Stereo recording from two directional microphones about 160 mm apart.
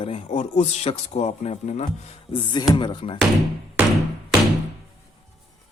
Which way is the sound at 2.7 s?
30° left (ahead or behind).